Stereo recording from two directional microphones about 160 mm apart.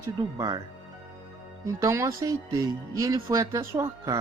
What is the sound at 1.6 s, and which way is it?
Speech, 20° right (ahead or behind).